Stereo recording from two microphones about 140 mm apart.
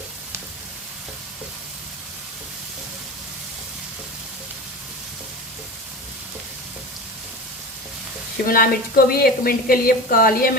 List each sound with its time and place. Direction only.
8.4 s a woman's voice: 90° left